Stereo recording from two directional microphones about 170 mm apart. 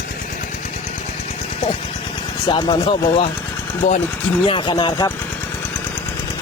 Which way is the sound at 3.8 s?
40° left (ahead or behind).